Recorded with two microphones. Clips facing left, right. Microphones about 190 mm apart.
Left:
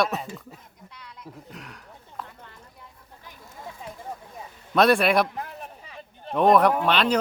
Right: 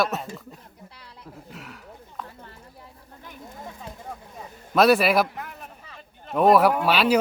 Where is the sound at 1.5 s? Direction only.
5° right (ahead or behind).